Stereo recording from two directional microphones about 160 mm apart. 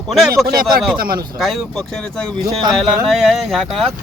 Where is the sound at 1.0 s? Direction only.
65° right (ahead or behind).